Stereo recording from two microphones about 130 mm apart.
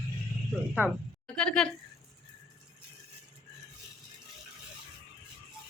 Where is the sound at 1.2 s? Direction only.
5° left (ahead or behind).